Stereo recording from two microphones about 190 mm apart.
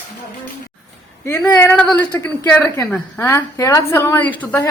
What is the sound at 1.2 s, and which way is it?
A woman's voice, 20° left (ahead or behind).